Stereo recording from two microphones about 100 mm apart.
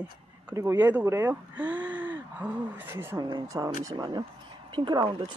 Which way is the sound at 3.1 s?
40° right (ahead or behind).